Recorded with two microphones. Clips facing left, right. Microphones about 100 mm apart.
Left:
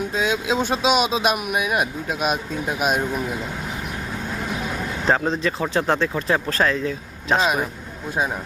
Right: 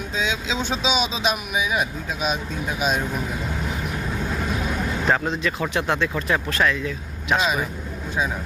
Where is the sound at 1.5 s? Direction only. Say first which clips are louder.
Left 2 dB; 60° left (ahead or behind).